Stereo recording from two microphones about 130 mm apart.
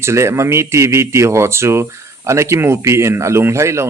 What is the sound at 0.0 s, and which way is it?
Speech, 20° right (ahead or behind).